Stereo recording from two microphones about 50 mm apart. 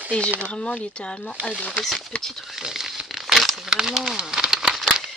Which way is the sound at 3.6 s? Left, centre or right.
Centre.